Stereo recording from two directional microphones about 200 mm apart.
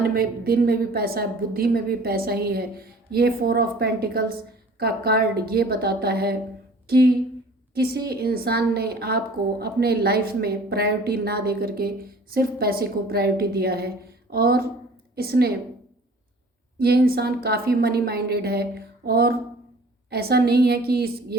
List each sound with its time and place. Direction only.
0.1 s a woman's voice: 50° right (ahead or behind)
16.7 s a woman's voice: 50° right (ahead or behind)